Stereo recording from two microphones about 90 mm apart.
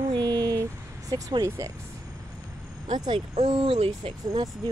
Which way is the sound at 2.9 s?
75° right (ahead or behind).